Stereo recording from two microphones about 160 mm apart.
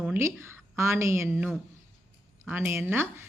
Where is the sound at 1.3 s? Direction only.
5° right (ahead or behind).